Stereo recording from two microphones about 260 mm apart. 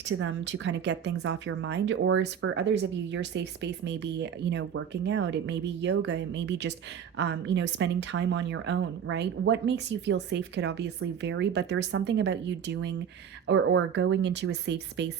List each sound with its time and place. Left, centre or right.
0.0 s speech: right